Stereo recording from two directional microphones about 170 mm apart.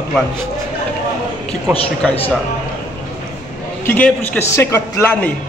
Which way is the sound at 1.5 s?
35° left (ahead or behind).